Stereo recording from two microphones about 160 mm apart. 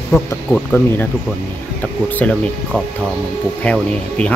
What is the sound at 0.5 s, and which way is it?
Speech, 10° left (ahead or behind).